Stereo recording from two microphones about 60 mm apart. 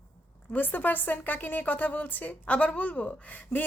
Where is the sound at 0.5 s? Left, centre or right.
Left.